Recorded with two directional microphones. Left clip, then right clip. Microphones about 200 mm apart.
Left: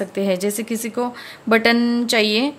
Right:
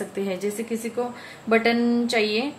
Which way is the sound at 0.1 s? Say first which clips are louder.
Left 7 dB; 45° left (ahead or behind).